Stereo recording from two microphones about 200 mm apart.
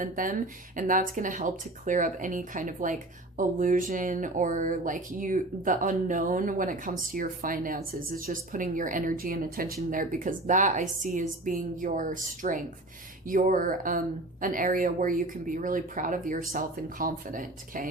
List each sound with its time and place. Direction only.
0.0 s speech: 45° right (ahead or behind)